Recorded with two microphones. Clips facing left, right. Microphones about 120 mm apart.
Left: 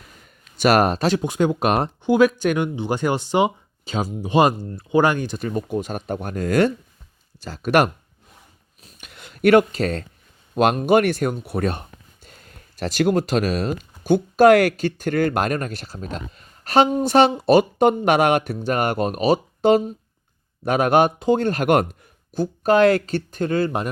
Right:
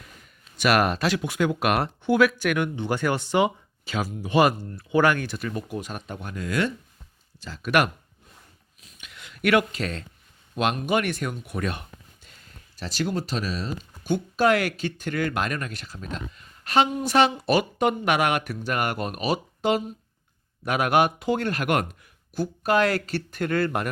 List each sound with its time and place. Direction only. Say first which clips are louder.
0.6 s speech: left 5 dB; 30° left (ahead or behind)
6.1 s speech: left 8 dB; 45° left (ahead or behind)
8.8 s a sound: left 3 dB; 40° left (ahead or behind)
10.5 s speech: left 8 dB; 40° left (ahead or behind); by 13.7 s 55° left (ahead or behind)
14.0 s speech: left 8 dB; 40° left (ahead or behind); by 23.9 s 20° left (ahead or behind)